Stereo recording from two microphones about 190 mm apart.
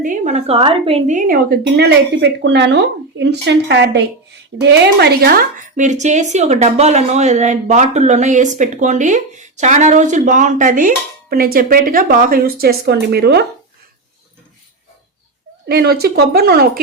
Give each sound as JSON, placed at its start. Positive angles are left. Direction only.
{"t": 0.0, "sound": "a woman's voice", "side_deg": -40}
{"t": 15.6, "sound": "a woman's voice", "side_deg": -60}